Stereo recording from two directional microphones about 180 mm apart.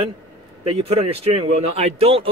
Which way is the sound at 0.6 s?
35° right (ahead or behind).